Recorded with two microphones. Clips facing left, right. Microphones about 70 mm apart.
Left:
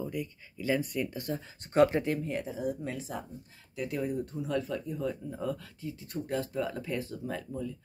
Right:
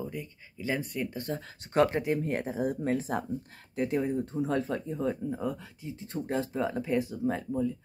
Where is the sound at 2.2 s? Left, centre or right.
Right.